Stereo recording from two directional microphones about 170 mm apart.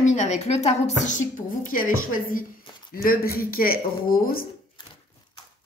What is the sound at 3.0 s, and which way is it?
Speech, 60° left (ahead or behind).